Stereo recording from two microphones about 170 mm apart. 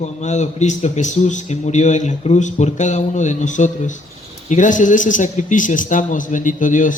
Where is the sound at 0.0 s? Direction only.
45° left (ahead or behind).